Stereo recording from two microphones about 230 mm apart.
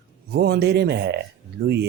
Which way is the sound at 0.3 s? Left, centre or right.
Right.